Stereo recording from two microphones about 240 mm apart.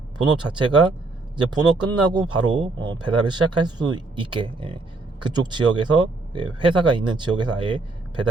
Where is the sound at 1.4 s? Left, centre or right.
Centre.